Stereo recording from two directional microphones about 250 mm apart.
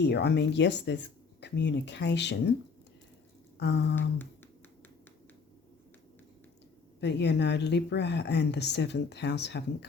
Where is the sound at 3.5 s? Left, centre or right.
Left.